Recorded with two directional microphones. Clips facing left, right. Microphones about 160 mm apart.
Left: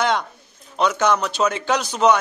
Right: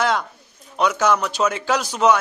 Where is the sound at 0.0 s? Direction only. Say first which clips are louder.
Even; centre (ahead or behind).